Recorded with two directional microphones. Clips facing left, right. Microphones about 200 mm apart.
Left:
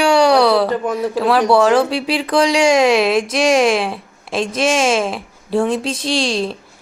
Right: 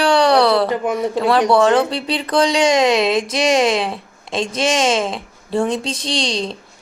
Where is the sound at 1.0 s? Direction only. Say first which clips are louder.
Left 1 dB; 20° right (ahead or behind).